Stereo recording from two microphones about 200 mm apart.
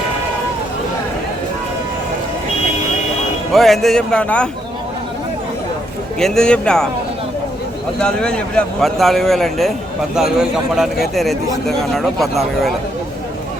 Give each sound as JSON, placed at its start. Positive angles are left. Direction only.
{"t": 3.5, "sound": "a man's voice", "side_deg": 0}
{"t": 6.1, "sound": "a man's voice", "side_deg": 5}
{"t": 7.9, "sound": "a man's voice", "side_deg": 5}